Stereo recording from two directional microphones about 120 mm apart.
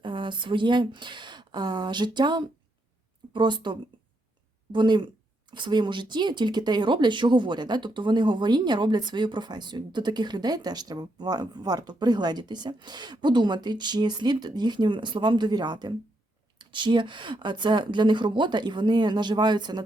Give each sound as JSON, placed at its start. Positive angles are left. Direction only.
{"t": 0.0, "sound": "a woman's voice", "side_deg": -40}